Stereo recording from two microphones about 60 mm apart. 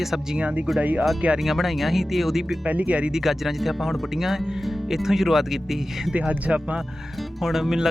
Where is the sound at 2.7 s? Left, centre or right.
Right.